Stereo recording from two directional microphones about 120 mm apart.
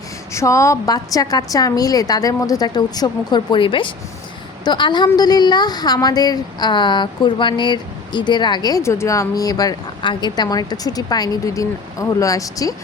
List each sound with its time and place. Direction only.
0.3 s speech: 25° left (ahead or behind)